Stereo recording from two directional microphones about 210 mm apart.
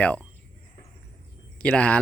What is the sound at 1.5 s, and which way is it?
Speech, 5° left (ahead or behind).